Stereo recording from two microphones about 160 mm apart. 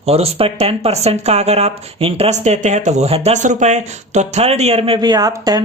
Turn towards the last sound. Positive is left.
turn(degrees=-25)  # may be behind; listen again after turning